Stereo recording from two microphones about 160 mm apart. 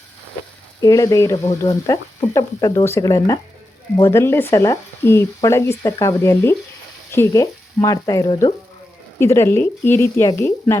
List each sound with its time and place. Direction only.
0.8 s speech: 20° left (ahead or behind)